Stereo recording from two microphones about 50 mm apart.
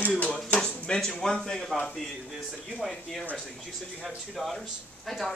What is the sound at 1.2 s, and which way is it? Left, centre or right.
Speech, centre.